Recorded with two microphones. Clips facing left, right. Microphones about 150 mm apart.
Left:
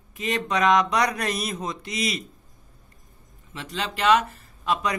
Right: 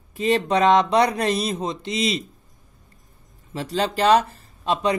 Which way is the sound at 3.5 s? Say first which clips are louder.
Right 7 dB; 35° right (ahead or behind).